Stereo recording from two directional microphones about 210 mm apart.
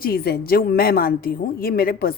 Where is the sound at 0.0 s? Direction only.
50° left (ahead or behind).